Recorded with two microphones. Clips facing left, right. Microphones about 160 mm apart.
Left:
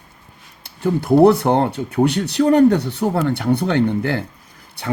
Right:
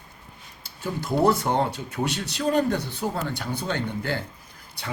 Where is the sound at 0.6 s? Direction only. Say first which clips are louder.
Left 11 dB; 60° left (ahead or behind).